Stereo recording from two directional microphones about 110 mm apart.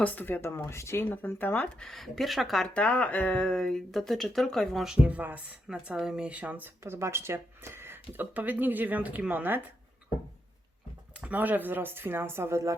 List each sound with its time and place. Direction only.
0.0 s speech: 15° left (ahead or behind)
1.8 s speech: 5° left (ahead or behind)
5.0 s speech: 15° right (ahead or behind)
11.2 s speech: 15° right (ahead or behind)